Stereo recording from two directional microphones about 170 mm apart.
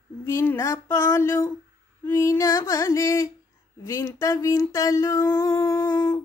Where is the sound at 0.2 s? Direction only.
15° left (ahead or behind).